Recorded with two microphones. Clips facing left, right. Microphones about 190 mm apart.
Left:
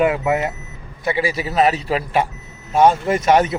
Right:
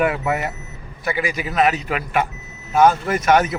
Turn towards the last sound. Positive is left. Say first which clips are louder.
# left 2 dB
turn(degrees=30)  # may be behind; listen again after turning